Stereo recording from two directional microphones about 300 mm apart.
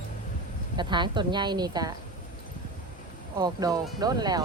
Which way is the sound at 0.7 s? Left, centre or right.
Centre.